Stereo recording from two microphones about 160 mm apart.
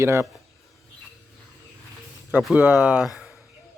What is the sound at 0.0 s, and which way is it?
Speech, 15° right (ahead or behind).